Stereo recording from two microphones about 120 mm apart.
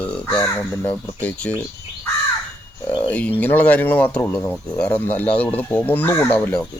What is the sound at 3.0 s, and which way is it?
Speech, 10° left (ahead or behind).